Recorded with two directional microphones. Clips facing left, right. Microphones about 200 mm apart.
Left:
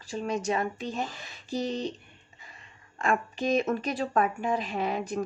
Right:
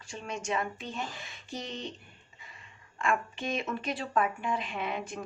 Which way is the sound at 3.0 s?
40° left (ahead or behind).